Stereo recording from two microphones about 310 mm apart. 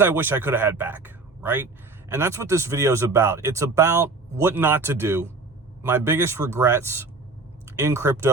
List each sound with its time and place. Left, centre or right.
0.0 s speech: centre